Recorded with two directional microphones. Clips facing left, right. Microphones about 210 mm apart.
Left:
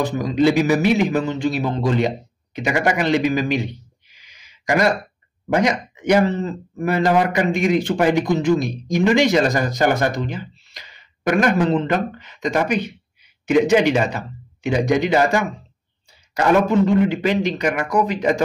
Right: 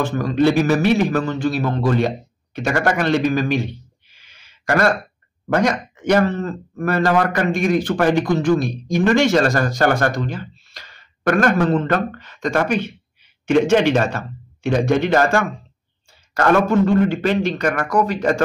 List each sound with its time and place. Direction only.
0.0 s speech: 15° left (ahead or behind)
2.6 s speech: 10° left (ahead or behind)